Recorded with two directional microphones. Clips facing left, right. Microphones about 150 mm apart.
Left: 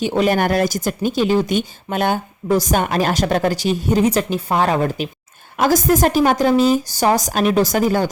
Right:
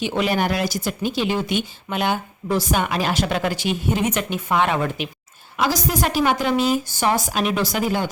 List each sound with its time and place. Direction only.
0.2 s speech: 45° left (ahead or behind)